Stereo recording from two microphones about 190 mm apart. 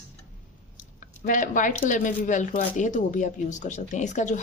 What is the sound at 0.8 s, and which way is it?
Speech, 45° left (ahead or behind).